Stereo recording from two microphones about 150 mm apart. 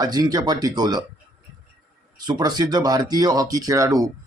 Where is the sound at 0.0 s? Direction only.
25° right (ahead or behind).